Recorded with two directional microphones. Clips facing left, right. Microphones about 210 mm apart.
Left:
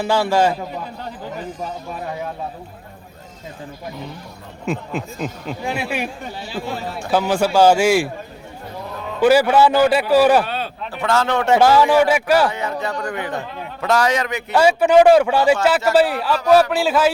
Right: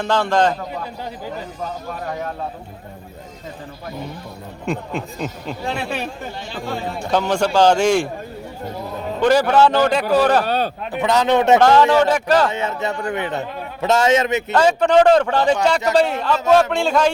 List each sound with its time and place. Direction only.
0.0 s a man's voice: 10° left (ahead or behind)
4.6 s a man's voice: centre (ahead or behind)
9.2 s a man's voice: 10° left (ahead or behind)
10.4 s a sound: 40° right (ahead or behind)
10.9 s speech: 15° right (ahead or behind)
11.6 s a man's voice: 10° left (ahead or behind)
12.5 s a man's voice: 25° right (ahead or behind)
14.5 s a man's voice: 10° left (ahead or behind)